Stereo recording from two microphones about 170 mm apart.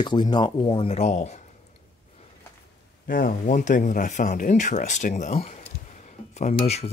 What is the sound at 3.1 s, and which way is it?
Speech, 55° left (ahead or behind).